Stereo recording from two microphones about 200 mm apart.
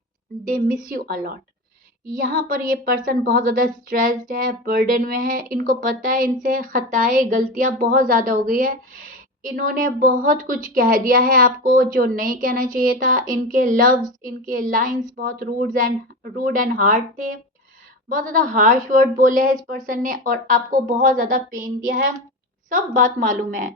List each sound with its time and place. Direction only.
0.4 s a woman's voice: 45° right (ahead or behind)